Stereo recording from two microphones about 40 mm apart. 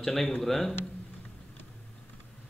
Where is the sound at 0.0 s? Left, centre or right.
Centre.